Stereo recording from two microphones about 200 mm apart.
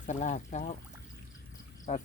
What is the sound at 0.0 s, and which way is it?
Speech, 35° left (ahead or behind).